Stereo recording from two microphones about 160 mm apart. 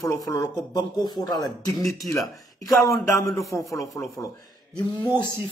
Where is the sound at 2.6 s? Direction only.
20° left (ahead or behind).